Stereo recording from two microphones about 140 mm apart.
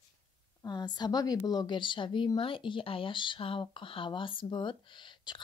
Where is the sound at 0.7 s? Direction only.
30° left (ahead or behind).